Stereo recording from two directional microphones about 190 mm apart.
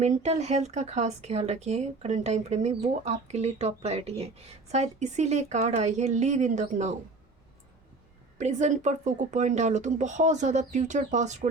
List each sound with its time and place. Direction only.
0.0 s speech: 35° right (ahead or behind)
8.4 s speech: 40° right (ahead or behind)